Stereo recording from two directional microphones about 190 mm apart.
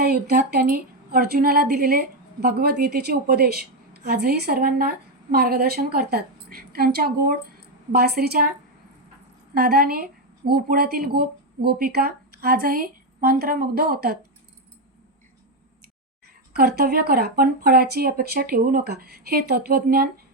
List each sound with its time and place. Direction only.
0.0 s a woman's voice: 55° right (ahead or behind)
9.6 s a woman's voice: 55° right (ahead or behind)
16.5 s a woman's voice: 55° right (ahead or behind)